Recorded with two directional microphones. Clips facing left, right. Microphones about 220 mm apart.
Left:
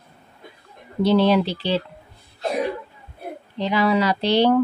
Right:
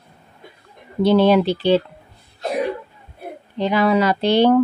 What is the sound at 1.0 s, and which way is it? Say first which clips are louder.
Speech: right 3 dB; 55° right (ahead or behind).